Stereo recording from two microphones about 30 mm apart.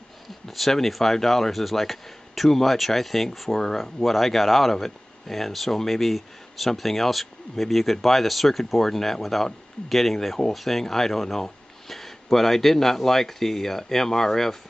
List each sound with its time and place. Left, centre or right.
0.5 s speech: centre
10.8 s speech: centre